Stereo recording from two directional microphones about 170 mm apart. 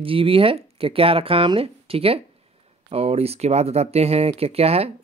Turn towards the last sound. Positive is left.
turn(degrees=-35)  # may be behind; listen again after turning